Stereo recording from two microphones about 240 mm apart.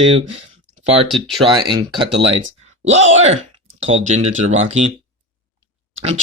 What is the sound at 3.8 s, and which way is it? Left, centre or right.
Speech, right.